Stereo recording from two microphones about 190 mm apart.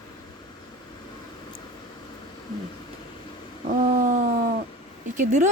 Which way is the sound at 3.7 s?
45° right (ahead or behind).